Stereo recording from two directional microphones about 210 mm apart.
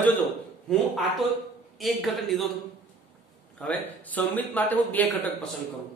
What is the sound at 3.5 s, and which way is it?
A man's voice, 5° left (ahead or behind).